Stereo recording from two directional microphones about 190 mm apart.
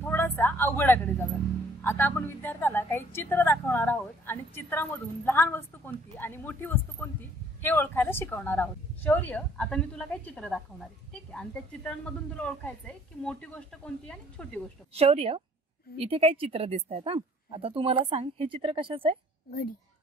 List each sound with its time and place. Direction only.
0.0 s a sound: 10° left (ahead or behind)
1.8 s a woman's voice: 10° left (ahead or behind)
15.0 s a woman's voice: 30° right (ahead or behind)